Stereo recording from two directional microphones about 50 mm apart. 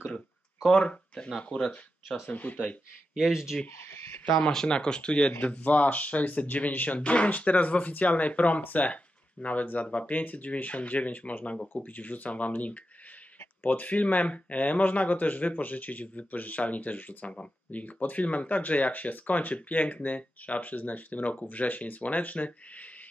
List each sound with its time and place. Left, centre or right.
0.8 s speech: left
1.5 s speech: centre
2.2 s speech: left
3.2 s speech: centre
4.3 s speech: centre
11.7 s speech: left